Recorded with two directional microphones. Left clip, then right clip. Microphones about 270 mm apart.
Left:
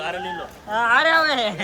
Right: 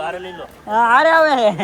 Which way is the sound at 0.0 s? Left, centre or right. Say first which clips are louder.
Right 1 dB; centre.